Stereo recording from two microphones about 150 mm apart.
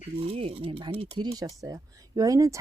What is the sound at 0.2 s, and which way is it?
Speech, 40° right (ahead or behind).